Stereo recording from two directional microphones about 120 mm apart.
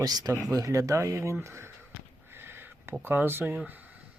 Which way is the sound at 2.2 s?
20° right (ahead or behind).